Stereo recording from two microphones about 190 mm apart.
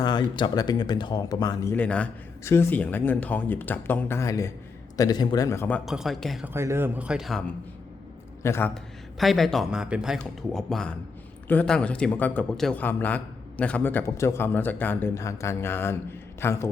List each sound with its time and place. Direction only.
0.0 s speech: 25° left (ahead or behind)
1.7 s speech: 5° left (ahead or behind)
5.8 s speech: centre (ahead or behind)
6.5 s a man's voice: 15° right (ahead or behind); by 16.6 s 15° left (ahead or behind)